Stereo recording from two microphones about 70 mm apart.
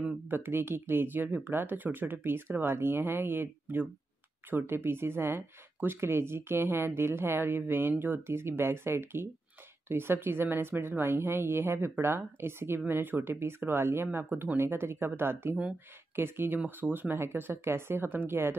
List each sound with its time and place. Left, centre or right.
0.3 s speech: right